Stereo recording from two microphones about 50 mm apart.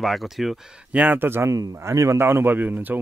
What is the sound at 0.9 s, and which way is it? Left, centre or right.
Speech, right.